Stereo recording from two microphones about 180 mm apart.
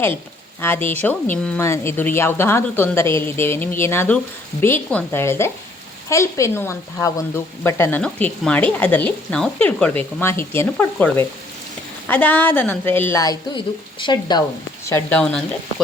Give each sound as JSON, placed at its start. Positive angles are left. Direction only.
{"t": 0.6, "sound": "speech", "side_deg": 10}